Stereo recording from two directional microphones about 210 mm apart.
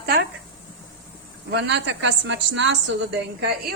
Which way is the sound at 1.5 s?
55° right (ahead or behind).